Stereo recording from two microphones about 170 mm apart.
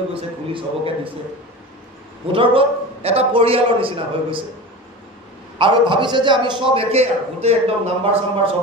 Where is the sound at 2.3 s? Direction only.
30° right (ahead or behind).